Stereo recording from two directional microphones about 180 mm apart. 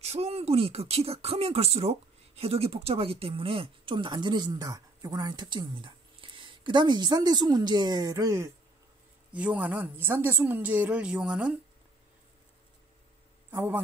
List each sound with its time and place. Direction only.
0.0 s speech: 35° right (ahead or behind); by 8.5 s 20° right (ahead or behind)
9.3 s a woman's voice: 5° right (ahead or behind)
13.5 s a man's voice: 10° right (ahead or behind)